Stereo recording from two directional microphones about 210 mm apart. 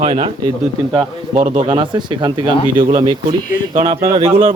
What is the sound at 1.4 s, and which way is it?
Speech, 35° right (ahead or behind).